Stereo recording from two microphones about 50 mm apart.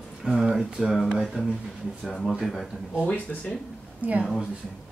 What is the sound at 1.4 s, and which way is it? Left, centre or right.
Speech, right.